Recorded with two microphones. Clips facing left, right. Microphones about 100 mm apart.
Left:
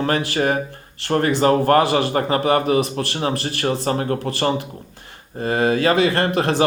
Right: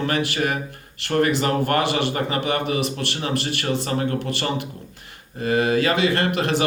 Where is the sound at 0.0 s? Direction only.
35° left (ahead or behind).